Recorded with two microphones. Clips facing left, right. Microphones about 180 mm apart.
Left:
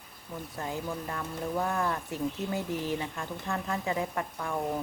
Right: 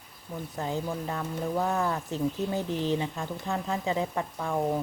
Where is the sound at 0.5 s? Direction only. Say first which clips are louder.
Right 3 dB; 20° right (ahead or behind).